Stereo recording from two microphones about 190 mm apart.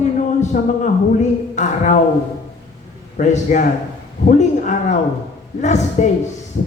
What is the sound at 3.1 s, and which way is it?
Speech, 40° left (ahead or behind).